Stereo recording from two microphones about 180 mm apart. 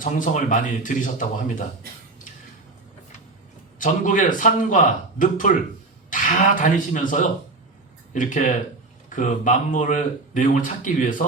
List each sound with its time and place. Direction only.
0.0 s speech: 45° left (ahead or behind)
3.8 s speech: 45° left (ahead or behind)
6.1 s speech: 45° left (ahead or behind)